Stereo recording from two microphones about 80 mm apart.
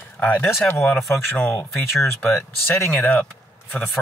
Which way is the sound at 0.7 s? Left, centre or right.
Left.